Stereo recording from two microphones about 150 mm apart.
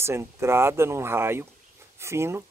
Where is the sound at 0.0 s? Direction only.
20° right (ahead or behind).